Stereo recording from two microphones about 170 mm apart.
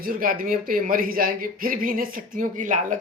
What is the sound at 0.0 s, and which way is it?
Speech, 55° right (ahead or behind).